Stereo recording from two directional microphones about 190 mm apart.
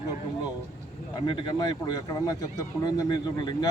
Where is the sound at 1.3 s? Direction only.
20° left (ahead or behind).